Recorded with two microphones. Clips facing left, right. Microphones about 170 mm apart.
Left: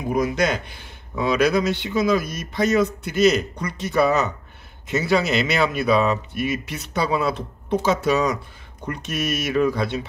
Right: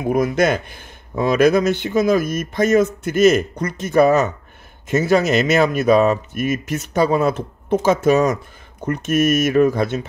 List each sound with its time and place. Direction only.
0.1 s speech: 50° right (ahead or behind)